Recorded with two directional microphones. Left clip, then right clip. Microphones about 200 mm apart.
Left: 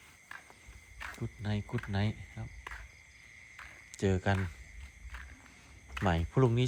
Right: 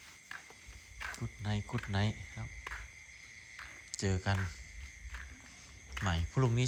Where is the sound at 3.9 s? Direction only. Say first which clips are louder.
Left 5 dB; 15° left (ahead or behind).